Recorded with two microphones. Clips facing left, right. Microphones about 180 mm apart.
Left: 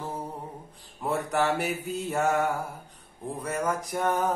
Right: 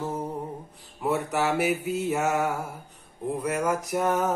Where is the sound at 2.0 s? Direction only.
5° right (ahead or behind).